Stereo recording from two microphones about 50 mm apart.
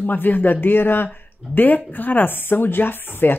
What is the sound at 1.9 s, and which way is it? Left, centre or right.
Speech, left.